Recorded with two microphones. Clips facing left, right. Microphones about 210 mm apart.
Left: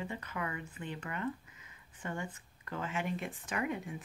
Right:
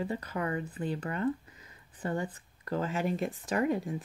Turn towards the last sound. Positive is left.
turn(degrees=-35)  # may be behind; listen again after turning